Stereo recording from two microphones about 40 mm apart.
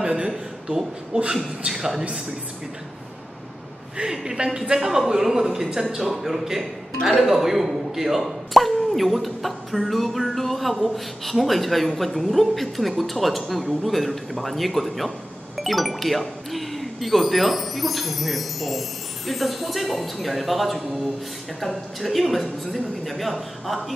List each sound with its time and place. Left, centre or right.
0.0 s a sound: centre
0.7 s a man's voice: centre
4.1 s a man's voice: centre